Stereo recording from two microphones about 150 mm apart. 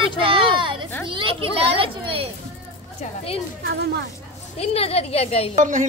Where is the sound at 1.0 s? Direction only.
35° right (ahead or behind).